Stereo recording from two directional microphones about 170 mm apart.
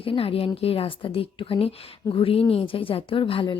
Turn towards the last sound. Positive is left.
turn(degrees=30)  # may be behind; listen again after turning